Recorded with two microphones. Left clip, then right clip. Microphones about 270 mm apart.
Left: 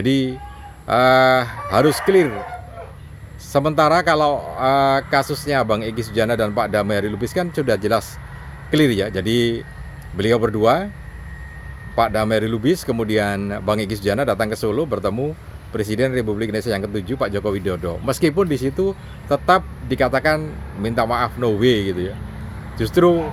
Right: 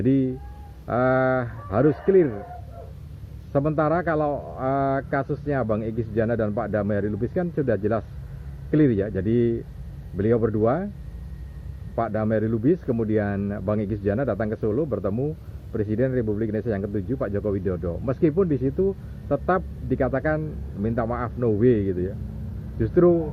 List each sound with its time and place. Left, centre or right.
0.9 s a man's voice: left
3.5 s a man's voice: left
9.2 s speech: left
10.2 s a man's voice: left
11.9 s a man's voice: left